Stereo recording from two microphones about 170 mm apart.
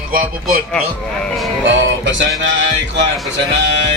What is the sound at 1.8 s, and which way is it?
Music, 90° right.